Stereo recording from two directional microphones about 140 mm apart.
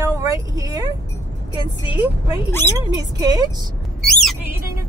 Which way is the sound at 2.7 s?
30° right (ahead or behind).